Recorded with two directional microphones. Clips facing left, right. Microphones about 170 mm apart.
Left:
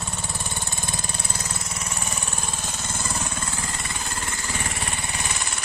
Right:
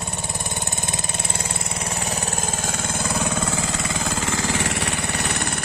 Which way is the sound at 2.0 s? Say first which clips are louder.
Right 6 dB; 35° right (ahead or behind).